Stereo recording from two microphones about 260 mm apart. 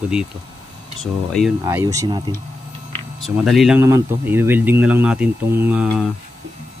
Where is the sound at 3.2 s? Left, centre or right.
Centre.